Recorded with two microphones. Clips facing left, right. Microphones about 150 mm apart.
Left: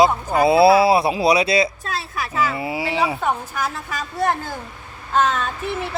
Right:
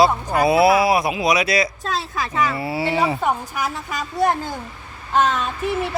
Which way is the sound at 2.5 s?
15° left (ahead or behind).